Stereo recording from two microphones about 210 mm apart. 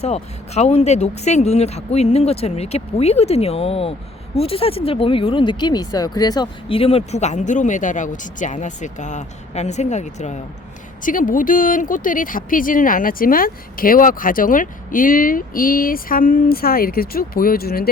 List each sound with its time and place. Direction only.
0.0 s speech: 30° left (ahead or behind); by 17.8 s 45° left (ahead or behind)